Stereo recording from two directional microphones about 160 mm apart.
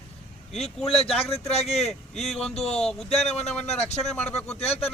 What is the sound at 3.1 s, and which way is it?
Speech, 40° left (ahead or behind).